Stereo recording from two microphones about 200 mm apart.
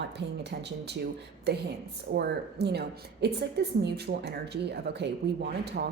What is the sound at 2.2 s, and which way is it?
A woman's voice, 55° right (ahead or behind).